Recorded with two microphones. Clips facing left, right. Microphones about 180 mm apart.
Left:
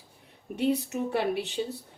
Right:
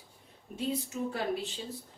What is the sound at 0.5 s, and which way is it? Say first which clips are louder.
Speech: left 7 dB; 70° left (ahead or behind).